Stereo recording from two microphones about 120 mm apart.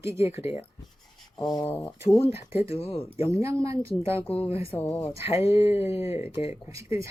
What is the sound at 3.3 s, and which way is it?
Speech, 25° right (ahead or behind).